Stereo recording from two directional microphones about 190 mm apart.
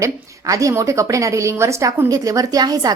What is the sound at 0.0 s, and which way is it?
A woman's voice, 15° right (ahead or behind).